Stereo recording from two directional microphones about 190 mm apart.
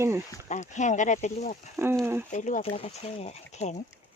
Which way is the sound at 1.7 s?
15° right (ahead or behind).